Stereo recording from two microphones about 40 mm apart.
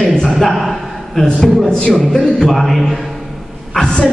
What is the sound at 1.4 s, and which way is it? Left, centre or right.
Speech, centre.